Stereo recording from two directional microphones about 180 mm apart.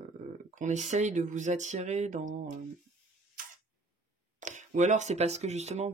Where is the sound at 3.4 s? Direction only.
50° right (ahead or behind).